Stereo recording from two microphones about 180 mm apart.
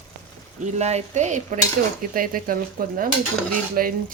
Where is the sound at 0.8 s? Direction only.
40° right (ahead or behind).